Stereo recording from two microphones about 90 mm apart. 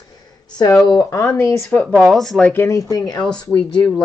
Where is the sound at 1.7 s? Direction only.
15° left (ahead or behind).